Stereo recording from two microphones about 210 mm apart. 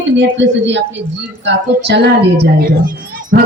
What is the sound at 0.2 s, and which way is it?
A woman's voice, 60° right (ahead or behind).